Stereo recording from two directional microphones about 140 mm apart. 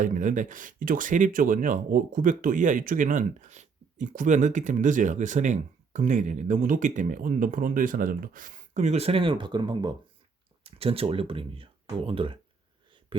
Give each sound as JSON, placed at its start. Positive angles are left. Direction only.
{"t": 0.0, "sound": "speech", "side_deg": -70}
{"t": 10.6, "sound": "speech", "side_deg": -45}